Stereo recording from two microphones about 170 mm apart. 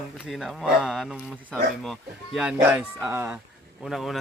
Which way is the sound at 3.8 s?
Centre (ahead or behind).